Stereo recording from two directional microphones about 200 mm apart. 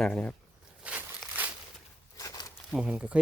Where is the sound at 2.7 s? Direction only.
5° right (ahead or behind).